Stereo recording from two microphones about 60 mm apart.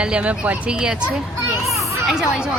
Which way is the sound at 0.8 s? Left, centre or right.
Centre.